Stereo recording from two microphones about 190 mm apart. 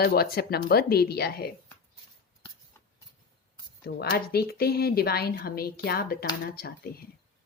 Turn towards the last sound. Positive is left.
turn(degrees=55)  # may be behind; listen again after turning